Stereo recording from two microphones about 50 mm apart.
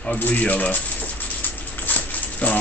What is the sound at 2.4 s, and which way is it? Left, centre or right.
Speech, left.